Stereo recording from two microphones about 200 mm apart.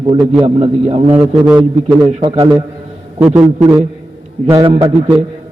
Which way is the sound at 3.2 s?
5° right (ahead or behind).